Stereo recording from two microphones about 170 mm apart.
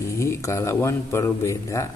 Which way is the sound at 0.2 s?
15° left (ahead or behind).